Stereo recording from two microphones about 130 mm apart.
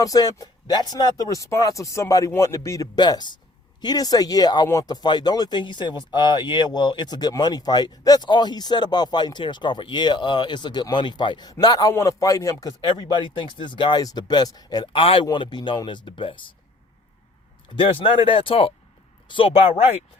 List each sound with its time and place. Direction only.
0.0 s speech: 30° left (ahead or behind)
17.7 s speech: 45° left (ahead or behind)